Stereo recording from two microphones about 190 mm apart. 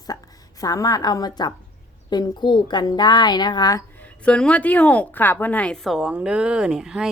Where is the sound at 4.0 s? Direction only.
5° left (ahead or behind).